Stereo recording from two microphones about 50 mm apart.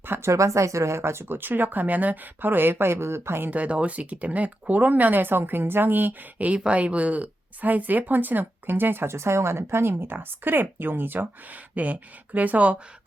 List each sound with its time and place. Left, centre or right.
0.0 s speech: right
0.3 s speech: right
3.5 s speech: right
6.7 s speech: right
9.1 s speech: right